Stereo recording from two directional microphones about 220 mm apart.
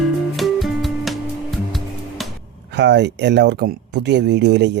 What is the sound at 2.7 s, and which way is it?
Speech, 50° right (ahead or behind).